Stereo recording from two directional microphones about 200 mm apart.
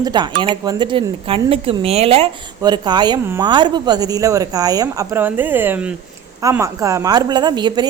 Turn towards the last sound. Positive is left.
turn(degrees=-20)  # may be behind; listen again after turning